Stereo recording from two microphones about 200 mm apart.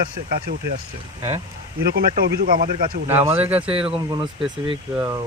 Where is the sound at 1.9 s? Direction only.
50° right (ahead or behind).